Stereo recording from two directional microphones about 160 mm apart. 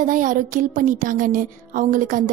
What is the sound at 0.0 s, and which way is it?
Speech, 55° right (ahead or behind).